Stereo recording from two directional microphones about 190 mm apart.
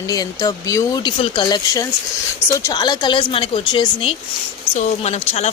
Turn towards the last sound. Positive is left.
turn(degrees=35)  # may be behind; listen again after turning